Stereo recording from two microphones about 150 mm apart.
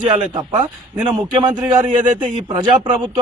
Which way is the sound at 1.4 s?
30° right (ahead or behind).